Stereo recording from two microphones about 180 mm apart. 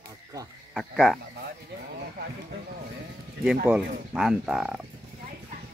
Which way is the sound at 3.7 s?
Centre (ahead or behind).